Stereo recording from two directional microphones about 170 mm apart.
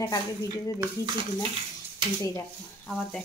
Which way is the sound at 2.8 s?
5° left (ahead or behind).